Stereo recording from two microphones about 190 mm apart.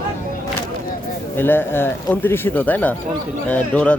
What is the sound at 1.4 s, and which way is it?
Speech, 10° left (ahead or behind).